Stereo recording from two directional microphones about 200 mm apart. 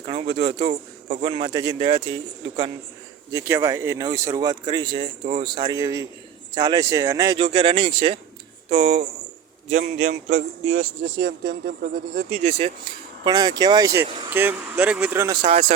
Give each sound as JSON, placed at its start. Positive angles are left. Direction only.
{"t": 0.1, "sound": "speech", "side_deg": -25}
{"t": 3.3, "sound": "a man's voice", "side_deg": -15}
{"t": 11.2, "sound": "speech", "side_deg": -60}
{"t": 12.4, "sound": "a man's voice", "side_deg": -30}
{"t": 13.2, "sound": "speech", "side_deg": -20}